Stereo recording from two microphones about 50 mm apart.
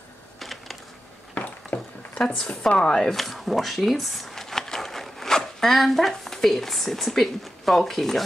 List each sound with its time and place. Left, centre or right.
0.4 s typing: centre
1.3 s a sound: left
2.4 s speech: centre
3.2 s speech: centre